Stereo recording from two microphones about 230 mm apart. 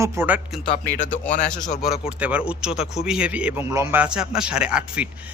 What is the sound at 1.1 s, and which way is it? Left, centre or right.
Speech, left.